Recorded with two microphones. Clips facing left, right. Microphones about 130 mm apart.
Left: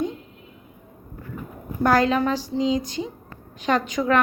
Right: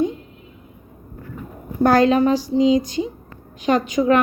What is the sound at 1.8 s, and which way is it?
Speech, 25° right (ahead or behind).